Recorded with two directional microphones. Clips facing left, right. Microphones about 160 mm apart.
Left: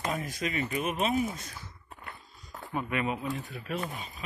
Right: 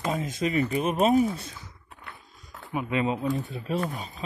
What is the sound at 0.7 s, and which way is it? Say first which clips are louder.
Speech: right 7 dB; 35° right (ahead or behind).